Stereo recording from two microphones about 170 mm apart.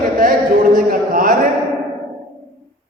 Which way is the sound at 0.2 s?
55° right (ahead or behind).